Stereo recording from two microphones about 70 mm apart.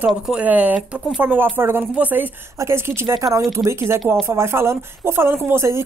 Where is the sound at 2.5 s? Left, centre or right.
Right.